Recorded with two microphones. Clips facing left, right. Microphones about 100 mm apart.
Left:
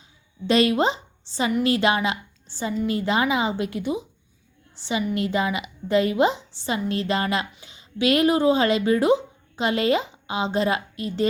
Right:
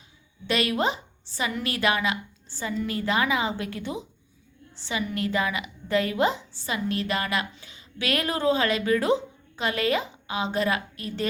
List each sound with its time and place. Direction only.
0.4 s a woman's voice: 30° left (ahead or behind)